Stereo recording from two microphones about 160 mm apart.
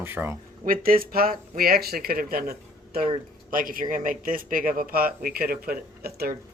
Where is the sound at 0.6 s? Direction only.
65° right (ahead or behind).